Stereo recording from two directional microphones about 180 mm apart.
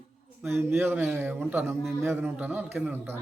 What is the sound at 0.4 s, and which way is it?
Speech, 15° right (ahead or behind).